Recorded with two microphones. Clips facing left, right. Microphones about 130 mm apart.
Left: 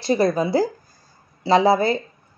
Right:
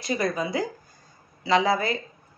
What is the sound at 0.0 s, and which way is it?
Speech, 35° left (ahead or behind).